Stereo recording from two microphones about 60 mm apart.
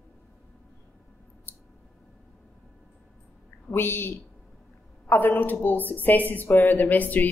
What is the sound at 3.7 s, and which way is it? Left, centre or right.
A woman's voice, left.